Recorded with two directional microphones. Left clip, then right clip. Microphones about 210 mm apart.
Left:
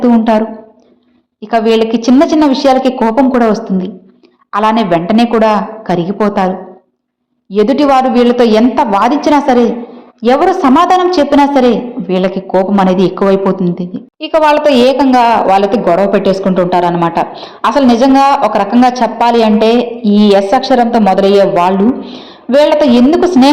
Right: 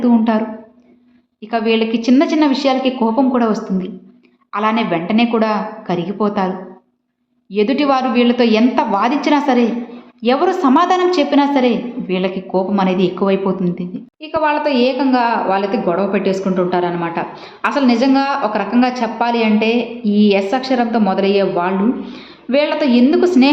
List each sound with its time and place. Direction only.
0.0 s a woman's voice: 20° left (ahead or behind)
7.5 s a woman's voice: 20° left (ahead or behind)
14.2 s a woman's voice: 35° left (ahead or behind); by 23.5 s 20° left (ahead or behind)